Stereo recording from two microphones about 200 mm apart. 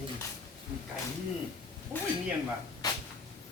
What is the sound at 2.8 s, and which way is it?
Cupboard open or close, 20° left (ahead or behind).